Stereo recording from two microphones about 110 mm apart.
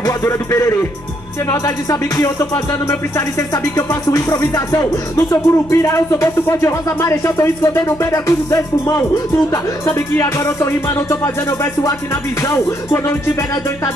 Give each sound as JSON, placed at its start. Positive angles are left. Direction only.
{"t": 0.0, "sound": "music", "side_deg": 25}
{"t": 12.4, "sound": "music", "side_deg": 25}